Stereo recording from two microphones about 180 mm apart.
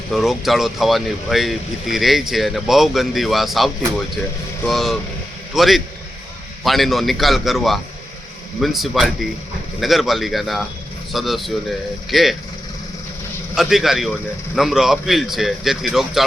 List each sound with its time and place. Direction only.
0.1 s speech: centre (ahead or behind)
13.6 s speech: centre (ahead or behind)